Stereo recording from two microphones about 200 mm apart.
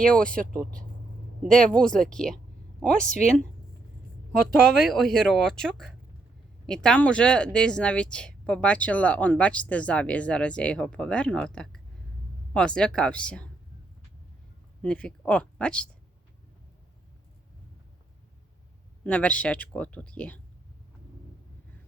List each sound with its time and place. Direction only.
0.2 s speech: 45° right (ahead or behind)
1.5 s speech: 5° left (ahead or behind)
3.1 s speech: 35° left (ahead or behind)
4.3 s speech: centre (ahead or behind)
14.8 s speech: 5° left (ahead or behind)
19.0 s speech: 5° left (ahead or behind)